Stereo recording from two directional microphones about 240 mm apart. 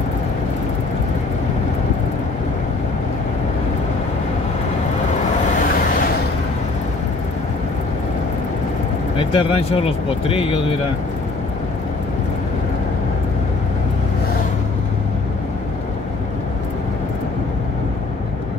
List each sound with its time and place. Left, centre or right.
9.2 s speech: left